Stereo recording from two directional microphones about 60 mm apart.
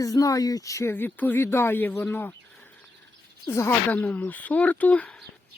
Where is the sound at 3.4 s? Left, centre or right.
Left.